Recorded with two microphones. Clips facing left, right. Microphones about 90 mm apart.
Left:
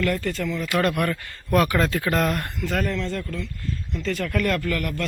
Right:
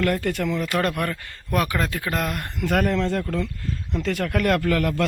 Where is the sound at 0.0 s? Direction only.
55° right (ahead or behind).